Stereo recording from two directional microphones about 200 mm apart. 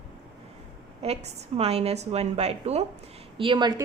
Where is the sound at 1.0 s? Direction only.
30° right (ahead or behind).